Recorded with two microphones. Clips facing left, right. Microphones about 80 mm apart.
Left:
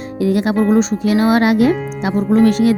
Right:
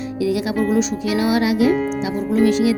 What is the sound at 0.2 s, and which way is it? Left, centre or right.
Speech, left.